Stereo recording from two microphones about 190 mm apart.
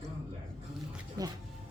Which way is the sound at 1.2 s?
20° right (ahead or behind).